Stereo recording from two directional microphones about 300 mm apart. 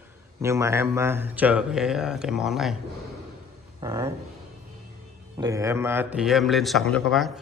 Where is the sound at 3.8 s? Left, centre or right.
Centre.